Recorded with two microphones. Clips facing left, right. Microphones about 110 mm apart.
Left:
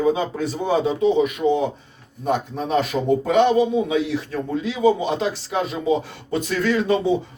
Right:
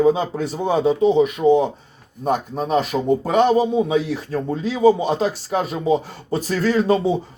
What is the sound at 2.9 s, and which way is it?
A man's voice, 40° right (ahead or behind).